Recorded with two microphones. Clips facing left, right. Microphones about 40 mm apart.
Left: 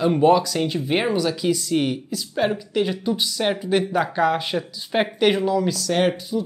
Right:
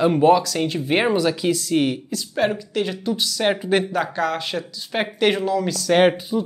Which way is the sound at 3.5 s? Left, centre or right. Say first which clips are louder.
Right 2 dB; centre.